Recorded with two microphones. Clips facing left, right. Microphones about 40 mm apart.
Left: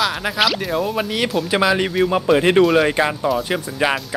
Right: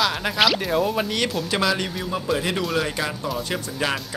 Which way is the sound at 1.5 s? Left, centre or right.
Left.